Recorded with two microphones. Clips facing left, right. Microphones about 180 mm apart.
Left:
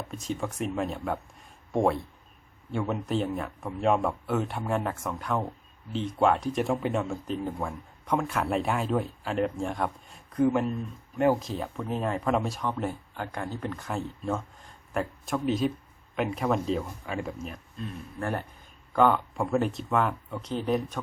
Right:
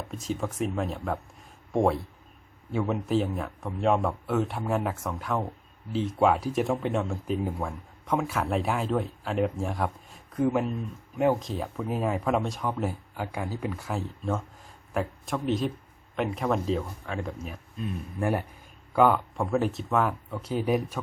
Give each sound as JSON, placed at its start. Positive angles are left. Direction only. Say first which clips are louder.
{"t": 0.1, "sound": "speech", "louder": "right 3 dB", "side_deg": 0}
{"t": 18.2, "sound": "speech", "louder": "right 4 dB", "side_deg": -15}